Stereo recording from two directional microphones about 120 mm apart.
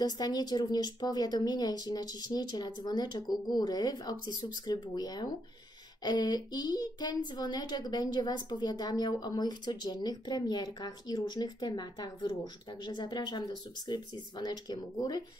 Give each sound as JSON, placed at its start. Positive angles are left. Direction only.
{"t": 0.0, "sound": "a woman's voice", "side_deg": 35}